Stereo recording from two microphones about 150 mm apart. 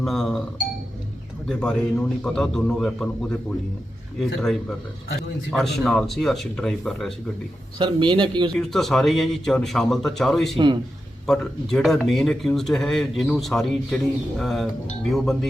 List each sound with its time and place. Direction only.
0.0 s speech: 5° left (ahead or behind)
1.5 s speech: 5° left (ahead or behind)
7.8 s speech: 30° right (ahead or behind)
8.5 s speech: centre (ahead or behind)